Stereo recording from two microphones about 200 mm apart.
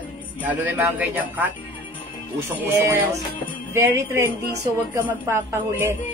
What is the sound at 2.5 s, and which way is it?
Speech, 10° right (ahead or behind).